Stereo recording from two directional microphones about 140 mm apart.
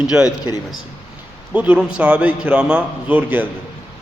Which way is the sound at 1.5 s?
10° right (ahead or behind).